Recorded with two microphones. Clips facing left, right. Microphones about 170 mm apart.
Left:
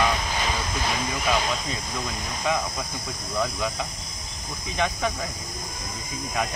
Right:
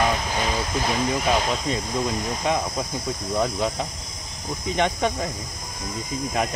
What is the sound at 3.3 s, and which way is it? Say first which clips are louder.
Speech: right 3 dB; 30° right (ahead or behind).